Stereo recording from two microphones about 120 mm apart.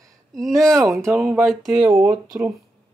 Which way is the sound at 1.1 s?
15° right (ahead or behind).